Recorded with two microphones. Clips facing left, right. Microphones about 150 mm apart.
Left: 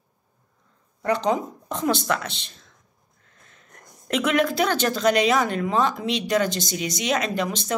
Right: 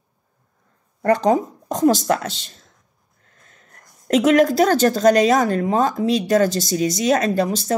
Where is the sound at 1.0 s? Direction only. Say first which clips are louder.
Right 6 dB; 45° right (ahead or behind).